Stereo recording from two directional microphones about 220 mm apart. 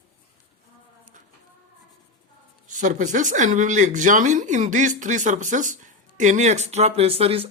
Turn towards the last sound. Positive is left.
turn(degrees=-25)  # may be behind; listen again after turning